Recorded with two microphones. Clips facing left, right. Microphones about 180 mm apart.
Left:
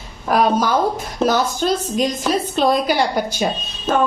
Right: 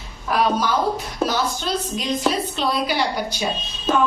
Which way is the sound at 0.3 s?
45° left (ahead or behind).